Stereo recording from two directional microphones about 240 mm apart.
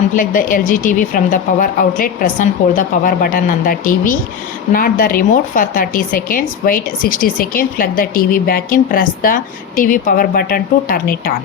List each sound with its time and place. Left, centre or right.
0.2 s speech: left